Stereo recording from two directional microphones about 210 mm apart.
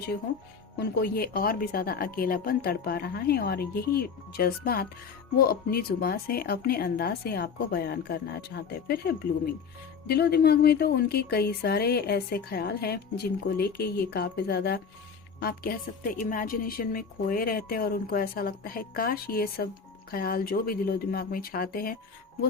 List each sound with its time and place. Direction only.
0.8 s speech: 50° left (ahead or behind)